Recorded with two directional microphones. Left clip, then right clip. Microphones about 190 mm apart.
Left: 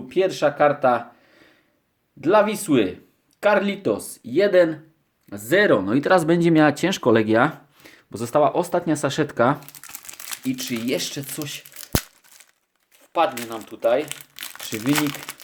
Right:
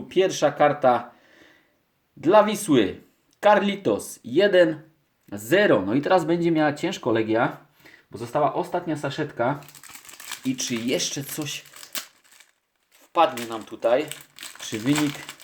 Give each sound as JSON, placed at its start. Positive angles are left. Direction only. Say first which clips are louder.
{"t": 0.1, "sound": "speech", "louder": "left 1 dB", "side_deg": 5}
{"t": 10.2, "sound": "speech", "louder": "even", "side_deg": 5}
{"t": 13.0, "sound": "speech", "louder": "right 1 dB", "side_deg": 5}